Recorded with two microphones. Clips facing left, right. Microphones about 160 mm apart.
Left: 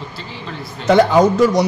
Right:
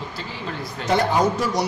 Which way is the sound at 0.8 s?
90° left.